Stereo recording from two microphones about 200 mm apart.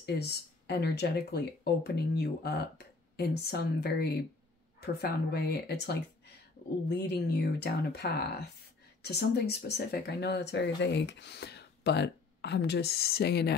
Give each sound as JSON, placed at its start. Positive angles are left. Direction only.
{"t": 0.0, "sound": "speech", "side_deg": 55}